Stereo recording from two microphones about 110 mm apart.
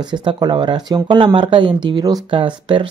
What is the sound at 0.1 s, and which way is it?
Speech, 45° right (ahead or behind).